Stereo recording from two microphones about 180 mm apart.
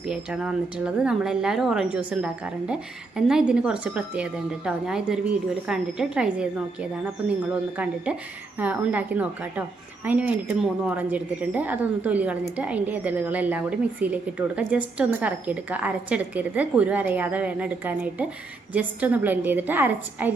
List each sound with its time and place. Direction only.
0.1 s speech: 5° right (ahead or behind)
8.5 s a woman's voice: 10° right (ahead or behind)